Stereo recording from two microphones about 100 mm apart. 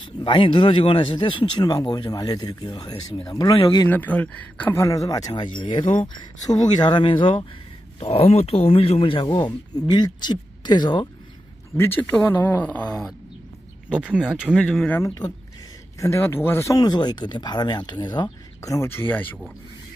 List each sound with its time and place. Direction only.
0.2 s speech: 55° left (ahead or behind)
3.9 s speech: 15° left (ahead or behind)
4.7 s speech: 35° left (ahead or behind)
5.3 s speech: 55° left (ahead or behind)
6.4 s speech: 40° left (ahead or behind); by 7.4 s 60° left (ahead or behind)
8.0 s speech: 85° left; by 11.1 s 50° left (ahead or behind)
11.7 s speech: 20° left (ahead or behind)
13.9 s speech: 10° right (ahead or behind)
15.0 s speech: 35° left (ahead or behind)
16.7 s speech: 45° left (ahead or behind)
18.6 s speech: 30° left (ahead or behind)